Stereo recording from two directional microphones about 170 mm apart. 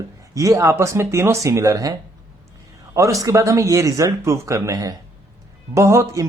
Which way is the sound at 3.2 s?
20° right (ahead or behind).